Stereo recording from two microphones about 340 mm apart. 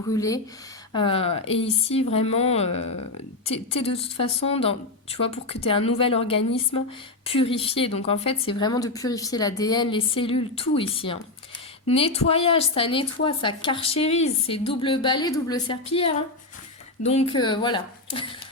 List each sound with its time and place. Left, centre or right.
0.1 s a woman's voice: centre